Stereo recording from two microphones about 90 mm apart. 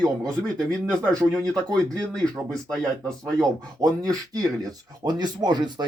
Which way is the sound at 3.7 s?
40° right (ahead or behind).